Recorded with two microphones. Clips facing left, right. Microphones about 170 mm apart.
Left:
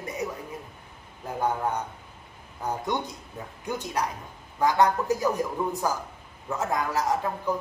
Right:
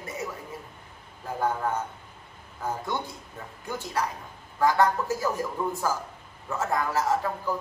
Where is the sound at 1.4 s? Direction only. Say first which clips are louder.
Even; 15° left (ahead or behind).